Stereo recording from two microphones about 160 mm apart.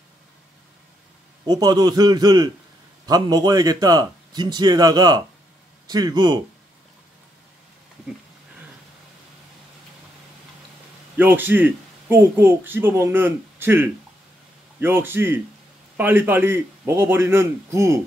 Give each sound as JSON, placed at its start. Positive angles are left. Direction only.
{"t": 1.4, "sound": "a man's voice", "side_deg": -25}
{"t": 11.1, "sound": "speech", "side_deg": -10}